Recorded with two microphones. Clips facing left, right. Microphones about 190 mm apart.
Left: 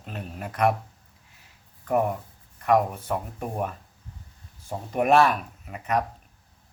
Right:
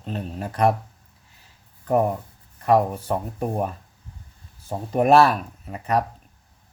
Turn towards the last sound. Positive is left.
turn(degrees=-35)  # may be behind; listen again after turning